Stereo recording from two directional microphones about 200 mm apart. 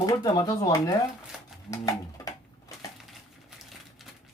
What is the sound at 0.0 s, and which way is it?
Speech, 20° left (ahead or behind).